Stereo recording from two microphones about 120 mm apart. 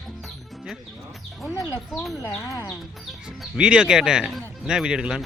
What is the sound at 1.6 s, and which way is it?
Speech, centre (ahead or behind).